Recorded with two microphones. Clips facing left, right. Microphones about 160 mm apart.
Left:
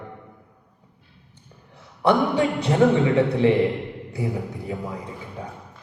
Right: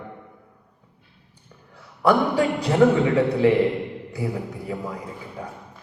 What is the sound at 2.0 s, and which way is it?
A man's voice, 25° left (ahead or behind).